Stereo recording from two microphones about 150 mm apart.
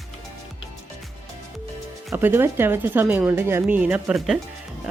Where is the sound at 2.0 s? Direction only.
15° right (ahead or behind).